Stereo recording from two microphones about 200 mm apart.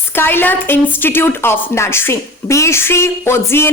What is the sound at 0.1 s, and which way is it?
Speech, 10° left (ahead or behind).